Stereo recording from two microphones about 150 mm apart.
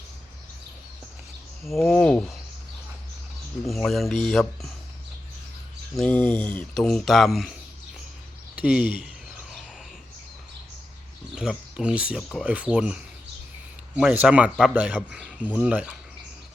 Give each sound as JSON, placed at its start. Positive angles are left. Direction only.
{"t": 1.6, "sound": "speech", "side_deg": 0}
{"t": 3.6, "sound": "speech", "side_deg": 0}
{"t": 6.0, "sound": "speech", "side_deg": 10}
{"t": 8.5, "sound": "speech", "side_deg": -10}
{"t": 11.3, "sound": "speech", "side_deg": -5}